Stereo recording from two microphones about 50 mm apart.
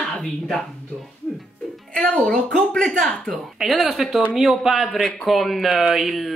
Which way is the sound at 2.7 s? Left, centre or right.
Centre.